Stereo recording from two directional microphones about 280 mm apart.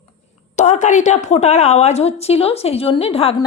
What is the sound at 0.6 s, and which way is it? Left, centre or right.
A woman's voice, left.